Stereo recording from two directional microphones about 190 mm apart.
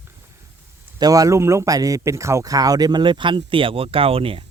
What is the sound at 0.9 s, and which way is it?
Speech, 20° right (ahead or behind).